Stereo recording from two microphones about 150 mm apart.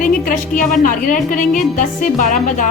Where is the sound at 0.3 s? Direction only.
65° left (ahead or behind).